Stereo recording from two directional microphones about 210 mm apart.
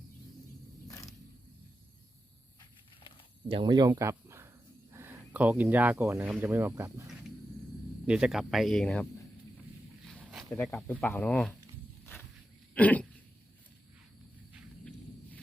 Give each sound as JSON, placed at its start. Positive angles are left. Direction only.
{"t": 2.6, "sound": "a sound", "side_deg": 20}
{"t": 3.5, "sound": "speech", "side_deg": -20}
{"t": 12.7, "sound": "throat clearing", "side_deg": 5}